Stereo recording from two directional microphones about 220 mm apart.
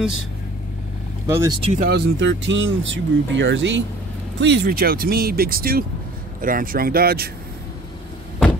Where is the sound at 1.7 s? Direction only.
40° right (ahead or behind).